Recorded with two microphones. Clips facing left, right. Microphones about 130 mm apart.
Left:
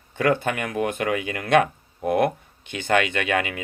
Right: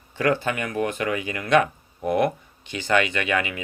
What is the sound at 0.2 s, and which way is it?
Speech, 50° left (ahead or behind).